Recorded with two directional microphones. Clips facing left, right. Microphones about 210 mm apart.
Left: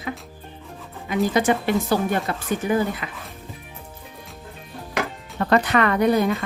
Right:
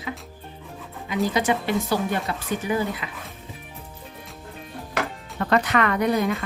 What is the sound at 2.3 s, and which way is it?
Speech, 50° left (ahead or behind).